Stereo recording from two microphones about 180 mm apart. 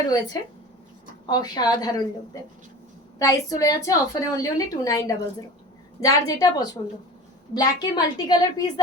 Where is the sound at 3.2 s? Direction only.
20° left (ahead or behind).